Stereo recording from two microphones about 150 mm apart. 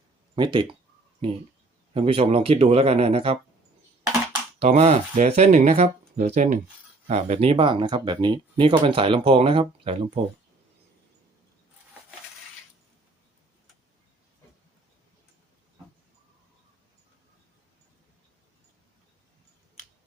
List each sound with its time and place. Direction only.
0.3 s speech: 30° right (ahead or behind)
4.6 s speech: 45° right (ahead or behind)